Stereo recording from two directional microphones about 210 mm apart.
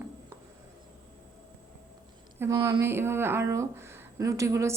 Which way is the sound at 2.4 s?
15° right (ahead or behind).